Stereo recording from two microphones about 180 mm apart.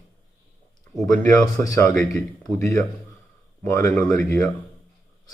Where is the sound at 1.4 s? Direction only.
15° left (ahead or behind).